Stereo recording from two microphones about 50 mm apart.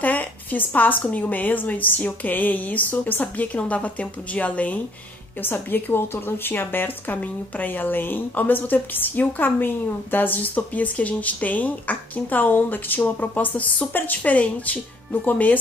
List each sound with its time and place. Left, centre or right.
0.0 s a woman's voice: left
5.4 s speech: left